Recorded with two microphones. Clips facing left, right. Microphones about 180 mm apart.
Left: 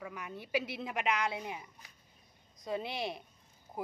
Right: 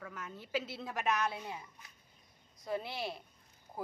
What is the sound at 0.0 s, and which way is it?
A woman's voice, 15° left (ahead or behind).